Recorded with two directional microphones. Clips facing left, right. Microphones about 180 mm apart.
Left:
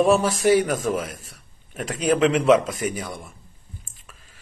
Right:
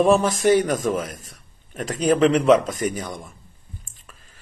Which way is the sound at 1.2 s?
5° left (ahead or behind).